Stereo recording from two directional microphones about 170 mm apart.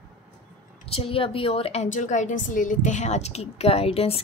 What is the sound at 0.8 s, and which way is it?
A woman's voice, 35° left (ahead or behind).